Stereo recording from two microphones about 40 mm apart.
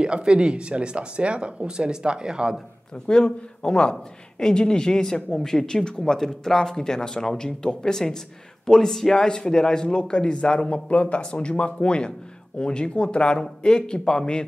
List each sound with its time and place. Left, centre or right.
0.0 s speech: right
3.1 s a man's voice: centre